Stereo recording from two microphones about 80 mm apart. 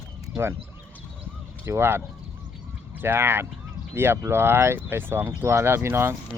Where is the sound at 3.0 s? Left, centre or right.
Right.